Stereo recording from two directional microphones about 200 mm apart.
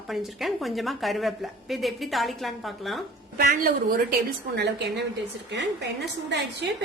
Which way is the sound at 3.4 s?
45° right (ahead or behind).